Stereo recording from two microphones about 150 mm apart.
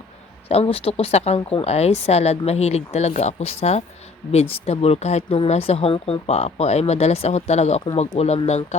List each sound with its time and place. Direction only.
0.4 s speech: 40° left (ahead or behind)